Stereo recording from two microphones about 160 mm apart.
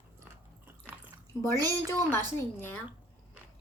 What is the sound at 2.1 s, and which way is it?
Speech, 15° left (ahead or behind).